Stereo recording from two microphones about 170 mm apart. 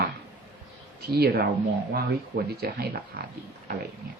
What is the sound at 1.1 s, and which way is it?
Speech, 70° right (ahead or behind).